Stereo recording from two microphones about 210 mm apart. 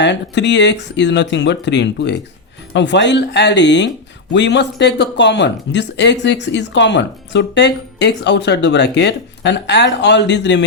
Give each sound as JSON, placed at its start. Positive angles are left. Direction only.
{"t": 0.0, "sound": "speech", "side_deg": 55}